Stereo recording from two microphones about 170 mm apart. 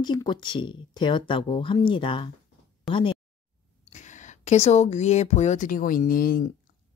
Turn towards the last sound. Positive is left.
turn(degrees=55)  # may be behind; listen again after turning